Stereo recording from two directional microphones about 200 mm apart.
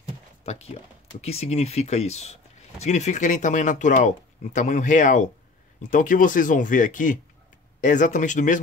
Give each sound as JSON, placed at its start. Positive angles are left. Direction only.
{"t": 0.4, "sound": "speech", "side_deg": 30}